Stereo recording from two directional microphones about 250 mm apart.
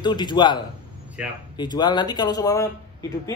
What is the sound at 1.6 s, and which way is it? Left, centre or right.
Mantra, centre.